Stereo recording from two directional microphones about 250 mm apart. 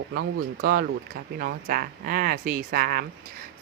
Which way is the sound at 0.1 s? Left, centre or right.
Right.